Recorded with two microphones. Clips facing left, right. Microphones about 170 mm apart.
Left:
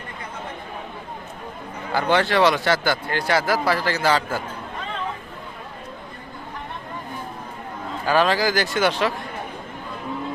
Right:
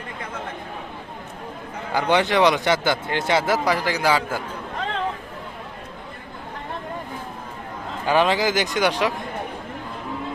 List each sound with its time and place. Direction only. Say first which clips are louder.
1.9 s speech: even; 15° right (ahead or behind)
8.0 s speech: even; 20° right (ahead or behind)